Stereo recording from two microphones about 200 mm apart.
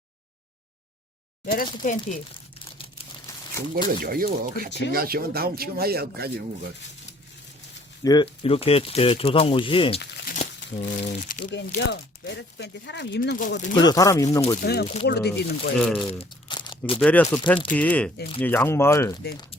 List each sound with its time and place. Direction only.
1.8 s speech: 40° left (ahead or behind)
3.2 s a sound: 15° left (ahead or behind)
3.8 s speech: 45° right (ahead or behind)
8.0 s speech: 25° left (ahead or behind)
10.3 s speech: 35° left (ahead or behind)
13.7 s speech: 20° left (ahead or behind)
14.6 s speech: 55° left (ahead or behind)
15.8 s speech: centre (ahead or behind)
16.1 s crumpling: 25° left (ahead or behind)
17.0 s speech: 10° left (ahead or behind)